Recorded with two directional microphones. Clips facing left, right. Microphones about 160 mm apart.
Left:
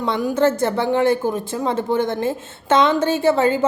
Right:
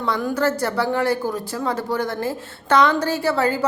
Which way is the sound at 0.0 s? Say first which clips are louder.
Left 3 dB; 15° left (ahead or behind).